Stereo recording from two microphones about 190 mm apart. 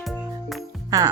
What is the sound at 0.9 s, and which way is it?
Speech, 20° right (ahead or behind).